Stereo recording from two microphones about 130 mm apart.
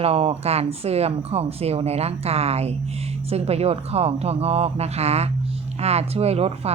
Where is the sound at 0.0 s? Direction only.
50° right (ahead or behind).